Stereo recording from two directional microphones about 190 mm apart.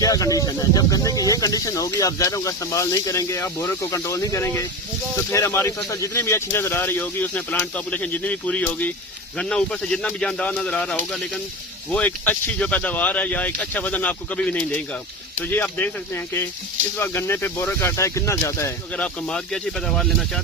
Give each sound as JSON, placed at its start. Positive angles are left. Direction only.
{"t": 0.0, "sound": "speech", "side_deg": 20}
{"t": 17.0, "sound": "speech", "side_deg": 10}